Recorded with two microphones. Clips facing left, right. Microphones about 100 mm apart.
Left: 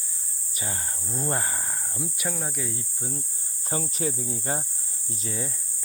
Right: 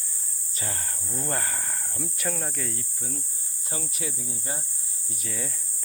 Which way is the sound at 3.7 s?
35° left (ahead or behind).